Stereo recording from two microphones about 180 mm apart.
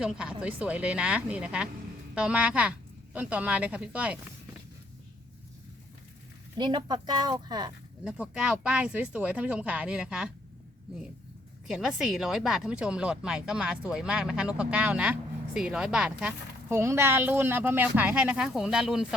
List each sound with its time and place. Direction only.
0.0 s speech: 5° right (ahead or behind)
6.6 s speech: 25° right (ahead or behind)
8.0 s speech: 5° right (ahead or behind)
11.7 s speech: centre (ahead or behind)